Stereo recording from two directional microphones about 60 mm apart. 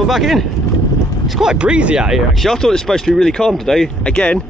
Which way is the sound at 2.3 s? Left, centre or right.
Centre.